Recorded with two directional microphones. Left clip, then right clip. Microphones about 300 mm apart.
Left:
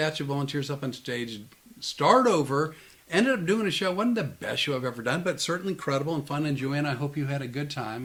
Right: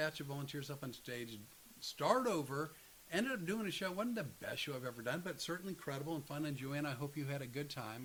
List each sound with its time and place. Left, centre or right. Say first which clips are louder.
0.0 s speech: left 13 dB; right